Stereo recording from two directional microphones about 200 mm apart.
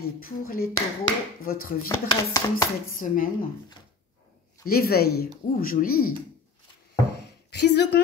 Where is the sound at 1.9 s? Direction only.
15° left (ahead or behind).